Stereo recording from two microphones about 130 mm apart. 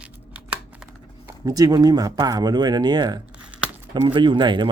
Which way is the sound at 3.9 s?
35° right (ahead or behind).